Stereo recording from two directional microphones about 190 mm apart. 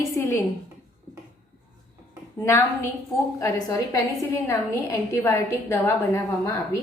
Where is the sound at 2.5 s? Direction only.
15° left (ahead or behind).